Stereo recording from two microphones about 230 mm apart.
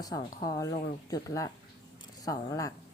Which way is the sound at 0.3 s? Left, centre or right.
Centre.